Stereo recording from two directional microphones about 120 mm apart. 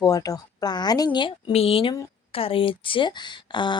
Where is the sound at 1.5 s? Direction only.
55° left (ahead or behind).